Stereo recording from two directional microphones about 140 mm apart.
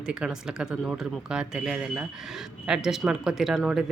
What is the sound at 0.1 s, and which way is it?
Speech, 5° right (ahead or behind).